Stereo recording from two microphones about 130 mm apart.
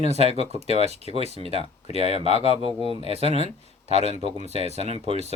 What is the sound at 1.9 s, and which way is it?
Speech, 55° left (ahead or behind).